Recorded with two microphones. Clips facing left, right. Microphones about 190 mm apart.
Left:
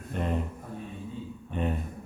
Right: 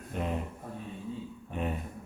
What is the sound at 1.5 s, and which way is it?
Speech, 5° right (ahead or behind).